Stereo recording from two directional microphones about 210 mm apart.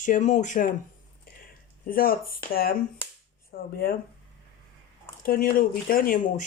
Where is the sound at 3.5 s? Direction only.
45° left (ahead or behind).